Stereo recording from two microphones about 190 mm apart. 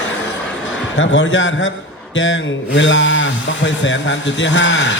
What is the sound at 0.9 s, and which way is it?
A man's voice, 75° left (ahead or behind).